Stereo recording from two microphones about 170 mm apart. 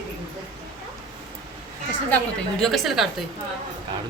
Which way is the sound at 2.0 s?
5° left (ahead or behind).